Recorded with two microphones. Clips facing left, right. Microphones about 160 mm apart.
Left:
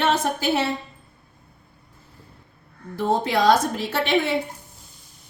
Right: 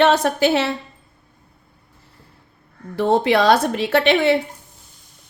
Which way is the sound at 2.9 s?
70° right (ahead or behind).